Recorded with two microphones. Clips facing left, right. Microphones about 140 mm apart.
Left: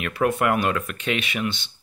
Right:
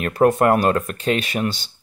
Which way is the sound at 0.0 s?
40° right (ahead or behind).